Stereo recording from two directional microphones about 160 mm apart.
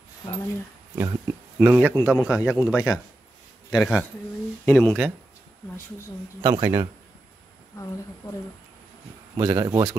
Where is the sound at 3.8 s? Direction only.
Centre (ahead or behind).